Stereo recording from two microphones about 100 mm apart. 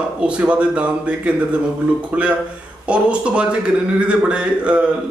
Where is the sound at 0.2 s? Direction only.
10° right (ahead or behind).